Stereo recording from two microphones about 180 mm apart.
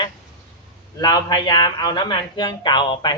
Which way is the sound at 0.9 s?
25° left (ahead or behind).